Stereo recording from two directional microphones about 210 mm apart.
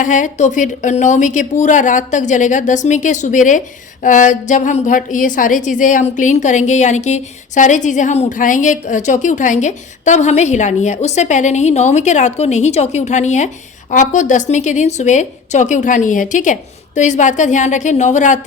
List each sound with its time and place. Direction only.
0.0 s a woman's voice: 35° left (ahead or behind)